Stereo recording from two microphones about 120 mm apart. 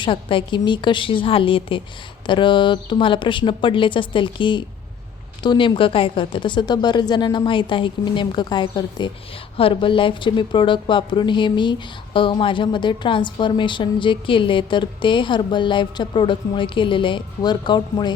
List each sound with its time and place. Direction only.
0.0 s a woman's voice: 45° left (ahead or behind)